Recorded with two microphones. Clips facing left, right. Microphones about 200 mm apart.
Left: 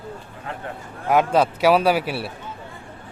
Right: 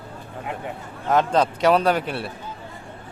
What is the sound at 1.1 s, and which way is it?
A man's voice, 10° left (ahead or behind).